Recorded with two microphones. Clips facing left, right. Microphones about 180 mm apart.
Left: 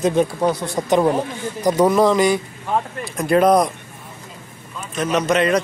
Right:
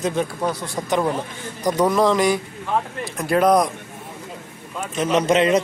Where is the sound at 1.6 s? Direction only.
10° left (ahead or behind).